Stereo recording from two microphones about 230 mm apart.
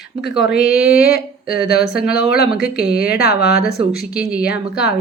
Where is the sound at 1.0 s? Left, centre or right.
Left.